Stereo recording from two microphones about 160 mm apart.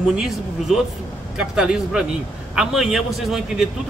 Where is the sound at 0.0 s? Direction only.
5° right (ahead or behind).